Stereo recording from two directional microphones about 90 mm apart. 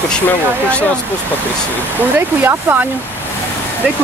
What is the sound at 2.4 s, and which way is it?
Speech, 20° right (ahead or behind).